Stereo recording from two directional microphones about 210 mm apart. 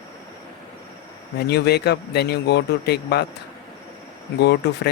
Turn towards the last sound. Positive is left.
turn(degrees=50)  # may be behind; listen again after turning